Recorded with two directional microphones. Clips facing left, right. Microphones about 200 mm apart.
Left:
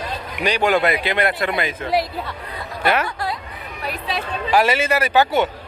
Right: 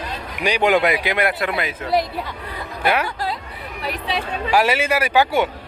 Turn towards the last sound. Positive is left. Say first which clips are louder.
# even
turn(degrees=-10)  # may be behind; listen again after turning